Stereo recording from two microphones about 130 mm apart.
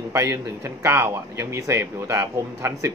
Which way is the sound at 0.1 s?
20° right (ahead or behind).